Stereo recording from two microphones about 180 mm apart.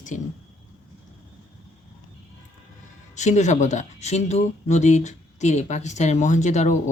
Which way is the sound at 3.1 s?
40° left (ahead or behind).